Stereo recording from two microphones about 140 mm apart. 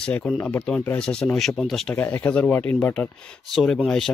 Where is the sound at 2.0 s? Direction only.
10° left (ahead or behind).